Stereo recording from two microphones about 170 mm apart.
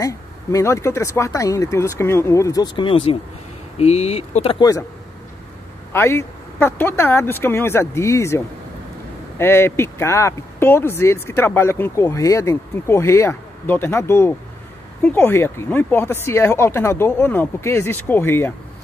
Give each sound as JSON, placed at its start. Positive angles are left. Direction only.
{"t": 0.0, "sound": "speech", "side_deg": 20}
{"t": 5.9, "sound": "speech", "side_deg": 15}
{"t": 9.4, "sound": "speech", "side_deg": 15}